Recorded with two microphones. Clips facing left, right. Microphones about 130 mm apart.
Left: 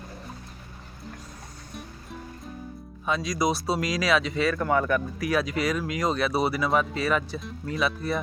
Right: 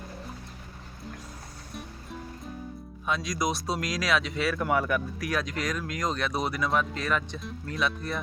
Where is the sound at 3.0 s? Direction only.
Centre (ahead or behind).